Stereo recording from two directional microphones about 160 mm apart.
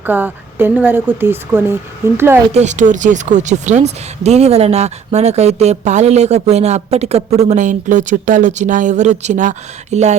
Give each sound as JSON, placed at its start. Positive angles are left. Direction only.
{"t": 0.0, "sound": "speech", "side_deg": -10}
{"t": 2.5, "sound": "speech", "side_deg": -45}